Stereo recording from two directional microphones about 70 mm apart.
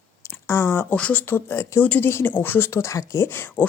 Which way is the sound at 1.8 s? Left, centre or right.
Left.